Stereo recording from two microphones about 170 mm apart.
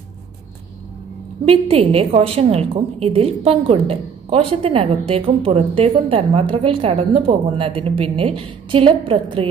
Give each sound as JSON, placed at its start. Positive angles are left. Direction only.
{"t": 1.4, "sound": "a woman's voice", "side_deg": -35}